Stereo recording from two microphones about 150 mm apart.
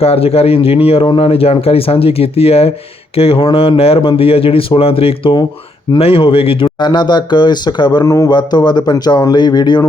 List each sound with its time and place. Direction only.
0.0 s speech: 40° left (ahead or behind)